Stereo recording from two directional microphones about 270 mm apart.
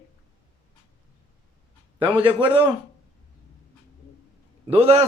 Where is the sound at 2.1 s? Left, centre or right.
Centre.